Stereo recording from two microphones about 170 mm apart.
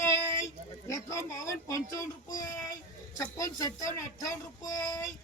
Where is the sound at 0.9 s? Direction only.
20° left (ahead or behind).